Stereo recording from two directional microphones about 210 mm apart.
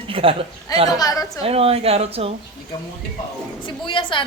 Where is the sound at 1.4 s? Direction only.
30° right (ahead or behind).